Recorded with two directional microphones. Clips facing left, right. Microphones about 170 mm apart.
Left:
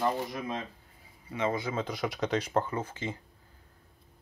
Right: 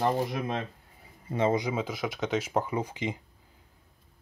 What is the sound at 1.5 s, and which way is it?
Speech, 15° right (ahead or behind).